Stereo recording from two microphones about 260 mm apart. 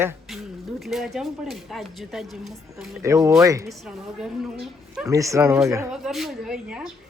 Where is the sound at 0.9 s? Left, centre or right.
Centre.